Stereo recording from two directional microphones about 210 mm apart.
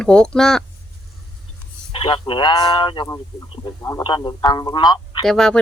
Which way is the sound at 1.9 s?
25° left (ahead or behind).